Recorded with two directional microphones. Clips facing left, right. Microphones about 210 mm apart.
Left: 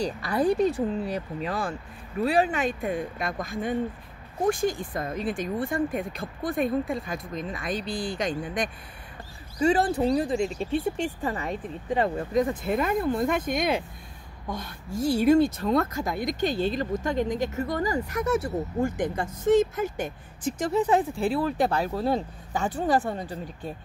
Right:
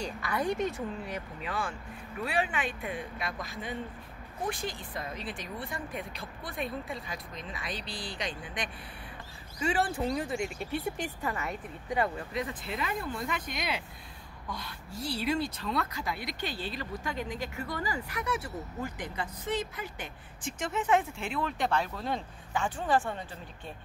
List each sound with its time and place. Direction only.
0.0 s speech: 35° left (ahead or behind)